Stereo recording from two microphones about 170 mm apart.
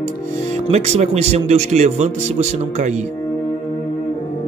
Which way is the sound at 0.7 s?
40° right (ahead or behind).